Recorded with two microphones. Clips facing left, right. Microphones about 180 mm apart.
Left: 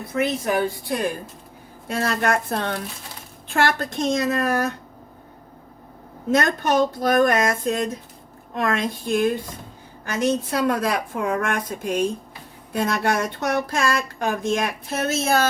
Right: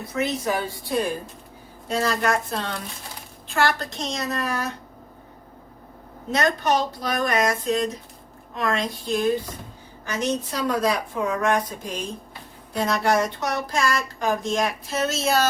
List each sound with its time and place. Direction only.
0.1 s speech: 55° left (ahead or behind)
2.0 s a woman's voice: 55° left (ahead or behind)
6.3 s a woman's voice: 50° left (ahead or behind)